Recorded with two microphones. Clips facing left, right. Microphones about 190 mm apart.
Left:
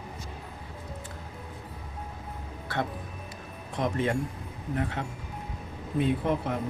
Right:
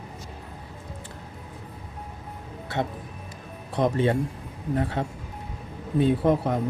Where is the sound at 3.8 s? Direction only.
30° right (ahead or behind).